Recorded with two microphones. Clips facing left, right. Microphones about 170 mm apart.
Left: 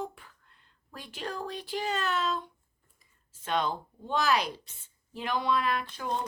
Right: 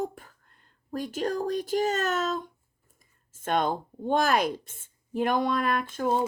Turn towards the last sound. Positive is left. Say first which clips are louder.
# right 5 dB
turn(degrees=-50)  # may be behind; listen again after turning